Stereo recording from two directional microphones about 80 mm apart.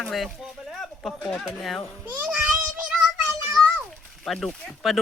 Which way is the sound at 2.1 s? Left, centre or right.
Right.